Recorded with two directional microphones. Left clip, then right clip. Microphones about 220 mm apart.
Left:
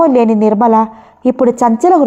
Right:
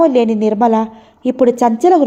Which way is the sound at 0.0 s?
30° left (ahead or behind).